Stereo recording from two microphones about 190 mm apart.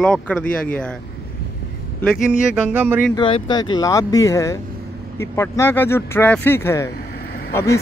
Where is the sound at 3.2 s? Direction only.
25° left (ahead or behind).